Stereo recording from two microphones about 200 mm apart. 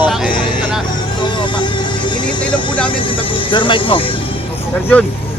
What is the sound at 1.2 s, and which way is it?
Music, 25° left (ahead or behind).